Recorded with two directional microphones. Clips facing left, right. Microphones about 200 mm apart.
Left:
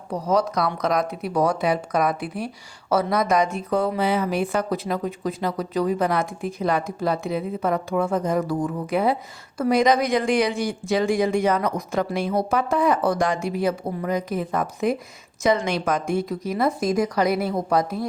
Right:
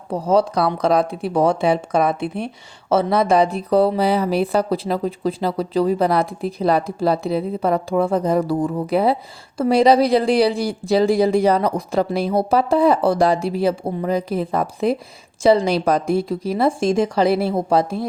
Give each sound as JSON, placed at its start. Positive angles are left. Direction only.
{"t": 0.1, "sound": "speech", "side_deg": -30}